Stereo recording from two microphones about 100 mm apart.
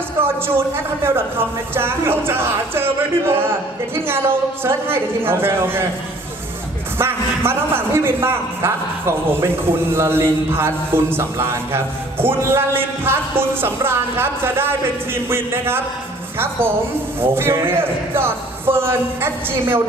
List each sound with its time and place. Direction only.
1.0 s a man's voice: 25° right (ahead or behind)
7.0 s a man's voice: 25° right (ahead or behind)